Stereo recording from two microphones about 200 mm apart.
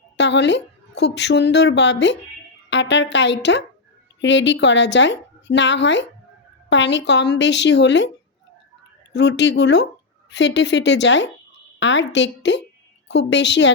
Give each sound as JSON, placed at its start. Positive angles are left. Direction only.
{"t": 0.2, "sound": "a woman's voice", "side_deg": 60}
{"t": 9.1, "sound": "a woman's voice", "side_deg": 60}